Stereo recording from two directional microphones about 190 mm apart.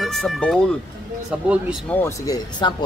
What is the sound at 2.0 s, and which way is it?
Speech, 20° left (ahead or behind).